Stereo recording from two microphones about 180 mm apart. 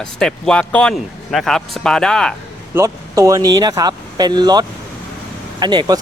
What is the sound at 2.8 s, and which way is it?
Speech, 15° right (ahead or behind).